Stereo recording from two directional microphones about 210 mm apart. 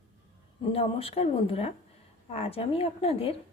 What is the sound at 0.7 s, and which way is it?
A woman's voice, 30° left (ahead or behind).